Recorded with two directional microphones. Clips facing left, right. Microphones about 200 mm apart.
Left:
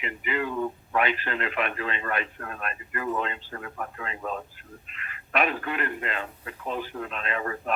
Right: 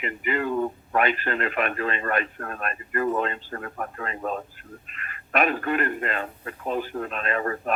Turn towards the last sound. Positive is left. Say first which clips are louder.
# right 4 dB
turn(degrees=-45)  # may be behind; listen again after turning